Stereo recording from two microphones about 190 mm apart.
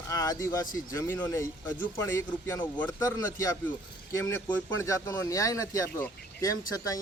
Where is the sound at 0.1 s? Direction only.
20° left (ahead or behind).